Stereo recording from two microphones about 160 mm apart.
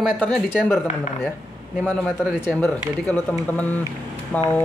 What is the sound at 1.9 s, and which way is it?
Speech, 15° left (ahead or behind).